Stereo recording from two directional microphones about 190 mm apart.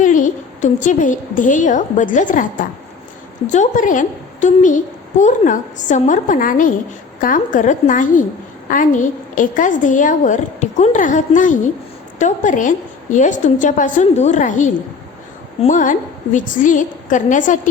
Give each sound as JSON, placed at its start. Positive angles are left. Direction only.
{"t": 0.0, "sound": "a woman's voice", "side_deg": 40}